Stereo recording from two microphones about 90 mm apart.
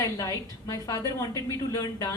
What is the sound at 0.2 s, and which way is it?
A woman's voice, 40° left (ahead or behind).